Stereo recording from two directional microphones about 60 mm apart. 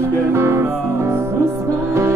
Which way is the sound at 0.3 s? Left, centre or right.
Right.